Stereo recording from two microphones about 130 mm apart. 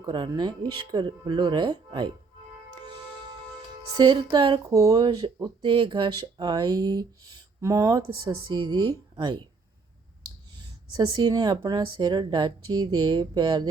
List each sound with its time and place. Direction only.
0.0 s speech: 35° right (ahead or behind)
2.7 s music: 35° right (ahead or behind)
3.9 s speech: 35° right (ahead or behind)
10.5 s speech: 35° right (ahead or behind)